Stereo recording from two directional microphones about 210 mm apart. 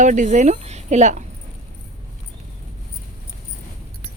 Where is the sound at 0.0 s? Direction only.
35° right (ahead or behind).